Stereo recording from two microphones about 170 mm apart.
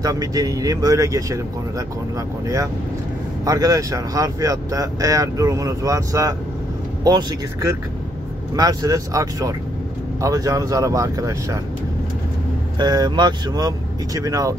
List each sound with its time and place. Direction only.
0.0 s speech: 20° right (ahead or behind)
2.4 s speech: 20° right (ahead or behind)
12.7 s speech: 25° right (ahead or behind)